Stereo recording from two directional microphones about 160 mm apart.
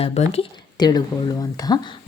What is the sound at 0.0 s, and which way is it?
Speech, 40° left (ahead or behind).